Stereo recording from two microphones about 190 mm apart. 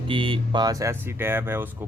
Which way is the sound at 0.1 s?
25° right (ahead or behind).